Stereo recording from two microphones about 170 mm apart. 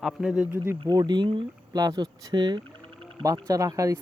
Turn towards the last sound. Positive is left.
turn(degrees=-20)  # may be behind; listen again after turning